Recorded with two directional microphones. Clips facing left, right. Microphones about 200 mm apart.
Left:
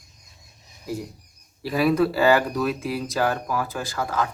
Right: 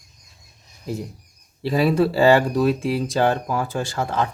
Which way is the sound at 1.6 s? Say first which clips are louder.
Right 2 dB; 25° right (ahead or behind).